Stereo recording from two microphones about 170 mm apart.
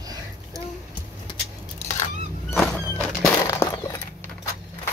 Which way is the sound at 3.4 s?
20° left (ahead or behind).